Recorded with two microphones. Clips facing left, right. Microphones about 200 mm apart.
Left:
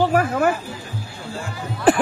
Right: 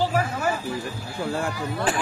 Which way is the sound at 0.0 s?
55° left (ahead or behind).